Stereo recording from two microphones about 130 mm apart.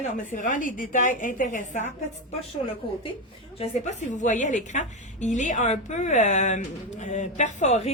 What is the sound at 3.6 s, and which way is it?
A woman's voice, 60° left (ahead or behind).